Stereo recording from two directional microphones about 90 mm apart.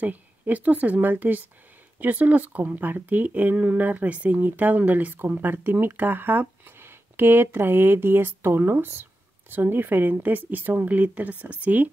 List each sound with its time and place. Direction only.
0.0 s speech: 20° right (ahead or behind)